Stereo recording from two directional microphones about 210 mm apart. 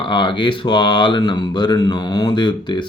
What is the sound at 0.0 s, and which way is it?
Speech, 25° left (ahead or behind).